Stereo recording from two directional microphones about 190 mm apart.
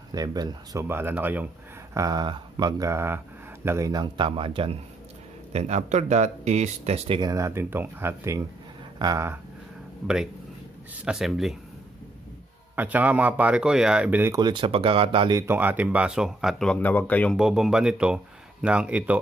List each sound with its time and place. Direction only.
0.1 s speech: 20° right (ahead or behind)
2.0 s speech: 20° right (ahead or behind)
7.2 s speech: 20° right (ahead or behind)
11.1 s speech: centre (ahead or behind)
12.7 s speech: 10° right (ahead or behind); by 17.4 s 10° left (ahead or behind)
17.4 s speech: 5° right (ahead or behind)